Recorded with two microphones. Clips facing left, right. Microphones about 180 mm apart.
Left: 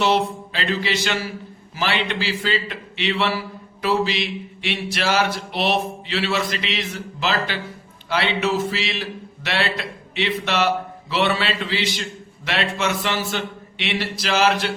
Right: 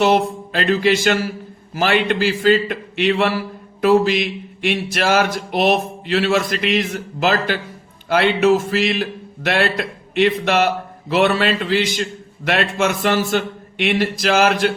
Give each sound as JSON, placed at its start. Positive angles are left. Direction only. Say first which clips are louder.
{"t": 0.0, "sound": "a man's voice", "louder": "right 4 dB", "side_deg": -50}